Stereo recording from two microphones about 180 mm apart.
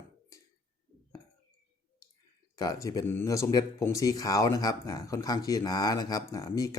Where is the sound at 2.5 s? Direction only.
20° left (ahead or behind).